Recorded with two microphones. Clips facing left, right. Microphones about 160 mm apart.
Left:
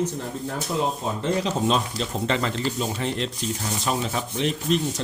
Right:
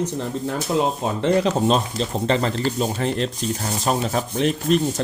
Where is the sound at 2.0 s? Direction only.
35° right (ahead or behind).